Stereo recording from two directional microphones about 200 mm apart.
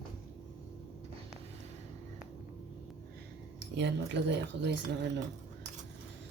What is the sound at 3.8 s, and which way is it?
Speech, 60° right (ahead or behind).